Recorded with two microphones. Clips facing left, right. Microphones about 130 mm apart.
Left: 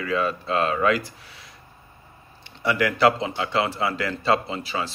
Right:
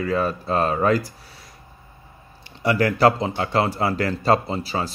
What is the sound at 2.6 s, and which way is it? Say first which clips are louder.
A man's voice: right 2 dB; 40° right (ahead or behind).